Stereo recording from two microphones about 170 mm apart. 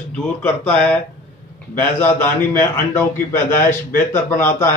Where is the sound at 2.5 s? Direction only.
15° left (ahead or behind).